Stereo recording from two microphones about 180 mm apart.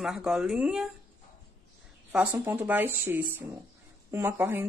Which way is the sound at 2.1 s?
10° right (ahead or behind).